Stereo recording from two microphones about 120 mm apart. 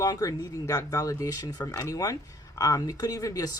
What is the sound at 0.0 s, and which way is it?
Speech, 30° left (ahead or behind).